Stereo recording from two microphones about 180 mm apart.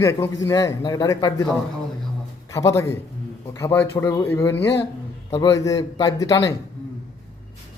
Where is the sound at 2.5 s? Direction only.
15° left (ahead or behind).